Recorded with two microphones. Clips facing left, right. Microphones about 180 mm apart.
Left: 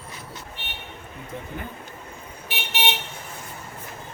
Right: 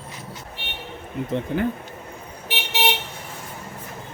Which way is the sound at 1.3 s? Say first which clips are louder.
Right 11 dB; 90° right.